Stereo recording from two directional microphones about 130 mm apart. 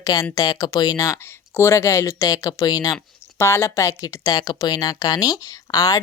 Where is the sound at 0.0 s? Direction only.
30° left (ahead or behind).